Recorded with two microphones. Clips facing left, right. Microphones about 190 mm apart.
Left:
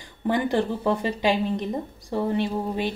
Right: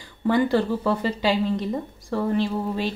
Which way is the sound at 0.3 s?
20° left (ahead or behind).